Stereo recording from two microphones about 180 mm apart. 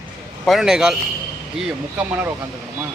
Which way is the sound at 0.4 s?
Centre (ahead or behind).